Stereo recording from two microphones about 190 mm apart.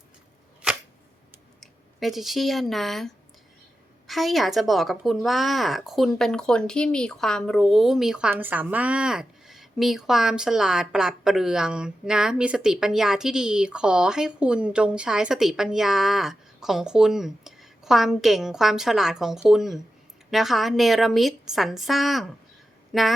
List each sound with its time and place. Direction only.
1.6 s speech: centre (ahead or behind)